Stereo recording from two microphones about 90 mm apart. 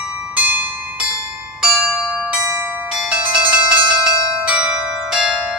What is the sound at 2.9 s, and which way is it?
Bell, 10° right (ahead or behind).